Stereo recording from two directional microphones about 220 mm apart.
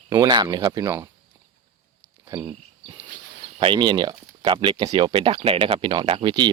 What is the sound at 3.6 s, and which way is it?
Speech, 20° right (ahead or behind).